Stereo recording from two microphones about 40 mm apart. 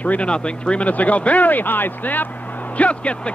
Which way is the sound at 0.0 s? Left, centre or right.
Left.